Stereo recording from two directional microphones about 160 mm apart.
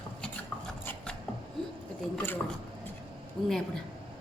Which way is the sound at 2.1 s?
10° left (ahead or behind).